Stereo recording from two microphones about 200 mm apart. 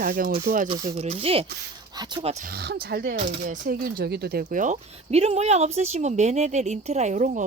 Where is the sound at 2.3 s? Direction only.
45° right (ahead or behind).